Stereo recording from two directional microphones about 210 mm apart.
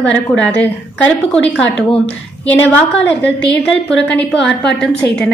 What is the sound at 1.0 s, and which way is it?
A woman's voice, 5° left (ahead or behind).